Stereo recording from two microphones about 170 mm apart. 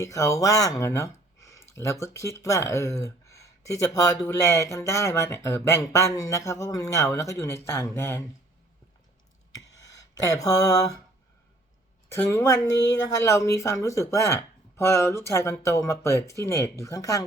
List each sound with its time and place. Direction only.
0.0 s speech: 20° left (ahead or behind)
10.2 s a sound: 20° left (ahead or behind)
12.1 s speech: 15° left (ahead or behind)